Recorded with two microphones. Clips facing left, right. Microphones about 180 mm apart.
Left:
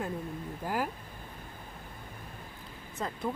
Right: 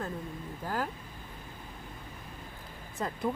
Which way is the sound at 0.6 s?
10° left (ahead or behind).